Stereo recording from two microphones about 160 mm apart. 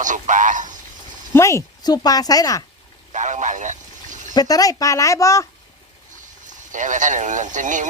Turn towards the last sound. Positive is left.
turn(degrees=-50)  # may be behind; listen again after turning